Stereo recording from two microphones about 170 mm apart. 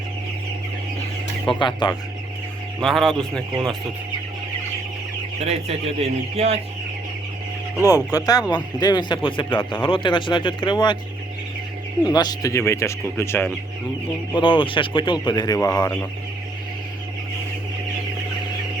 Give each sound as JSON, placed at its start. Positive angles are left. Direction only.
{"t": 1.5, "sound": "speech", "side_deg": 30}
{"t": 2.8, "sound": "speech", "side_deg": 0}
{"t": 5.4, "sound": "speech", "side_deg": -35}
{"t": 7.8, "sound": "speech", "side_deg": 20}
{"t": 12.0, "sound": "speech", "side_deg": 25}
{"t": 14.3, "sound": "speech", "side_deg": 30}